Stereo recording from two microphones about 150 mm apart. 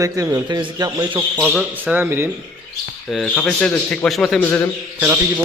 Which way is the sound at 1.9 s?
15° right (ahead or behind).